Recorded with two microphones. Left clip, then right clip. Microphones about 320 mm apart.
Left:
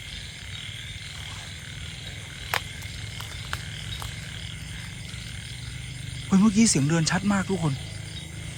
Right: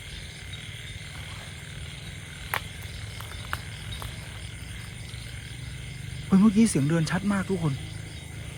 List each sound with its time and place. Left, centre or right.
6.3 s speech: centre